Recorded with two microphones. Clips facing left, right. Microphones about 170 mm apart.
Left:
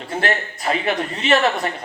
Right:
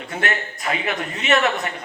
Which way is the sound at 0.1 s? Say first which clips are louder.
Left 3 dB; 30° left (ahead or behind).